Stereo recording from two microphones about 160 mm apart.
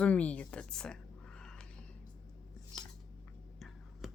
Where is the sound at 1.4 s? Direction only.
5° left (ahead or behind).